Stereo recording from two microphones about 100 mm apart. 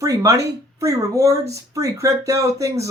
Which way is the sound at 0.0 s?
35° right (ahead or behind).